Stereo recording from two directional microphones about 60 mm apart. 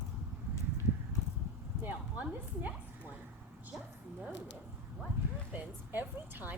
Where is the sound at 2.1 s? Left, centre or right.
Right.